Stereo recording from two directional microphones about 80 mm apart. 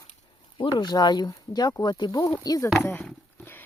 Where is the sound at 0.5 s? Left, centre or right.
Left.